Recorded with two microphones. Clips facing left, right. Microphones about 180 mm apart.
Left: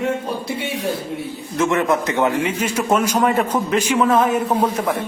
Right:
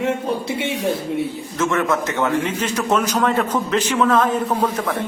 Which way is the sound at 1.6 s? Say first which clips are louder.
Left 2 dB; 15° left (ahead or behind).